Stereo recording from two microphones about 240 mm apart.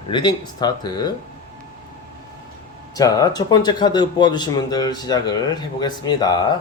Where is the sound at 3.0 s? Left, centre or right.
Centre.